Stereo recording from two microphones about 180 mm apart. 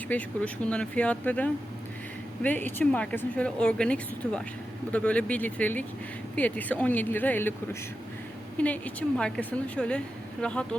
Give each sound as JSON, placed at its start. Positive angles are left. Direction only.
{"t": 0.1, "sound": "speech", "side_deg": 5}